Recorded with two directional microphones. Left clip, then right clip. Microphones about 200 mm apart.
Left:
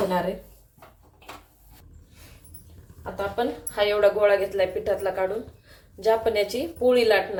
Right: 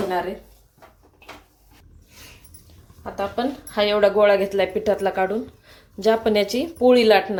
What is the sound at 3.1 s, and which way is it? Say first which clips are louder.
Speech: right 2 dB; 45° right (ahead or behind).